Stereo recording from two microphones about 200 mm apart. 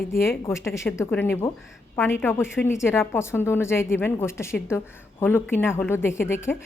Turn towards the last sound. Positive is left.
turn(degrees=10)  # may be behind; listen again after turning